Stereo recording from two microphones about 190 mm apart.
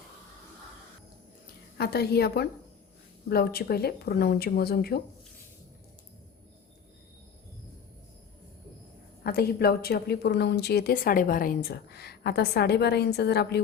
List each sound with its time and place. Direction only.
1.8 s a woman's voice: 55° left (ahead or behind)
9.2 s a woman's voice: 55° left (ahead or behind)